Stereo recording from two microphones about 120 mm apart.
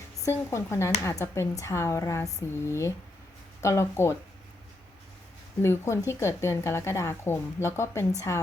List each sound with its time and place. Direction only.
0.3 s a woman's voice: 25° left (ahead or behind)
5.6 s a woman's voice: 25° left (ahead or behind)